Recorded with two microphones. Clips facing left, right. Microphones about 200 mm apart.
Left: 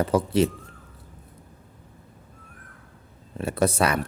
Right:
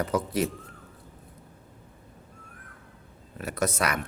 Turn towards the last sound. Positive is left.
turn(degrees=30)  # may be behind; listen again after turning